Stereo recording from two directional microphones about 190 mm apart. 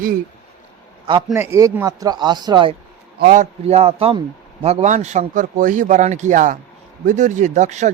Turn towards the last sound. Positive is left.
turn(degrees=-40)  # may be behind; listen again after turning